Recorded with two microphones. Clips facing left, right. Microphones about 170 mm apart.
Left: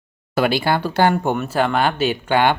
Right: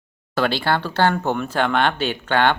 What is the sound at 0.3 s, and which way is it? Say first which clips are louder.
Speech: left 2 dB; 10° left (ahead or behind).